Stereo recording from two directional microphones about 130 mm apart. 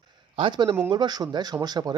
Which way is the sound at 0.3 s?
40° right (ahead or behind).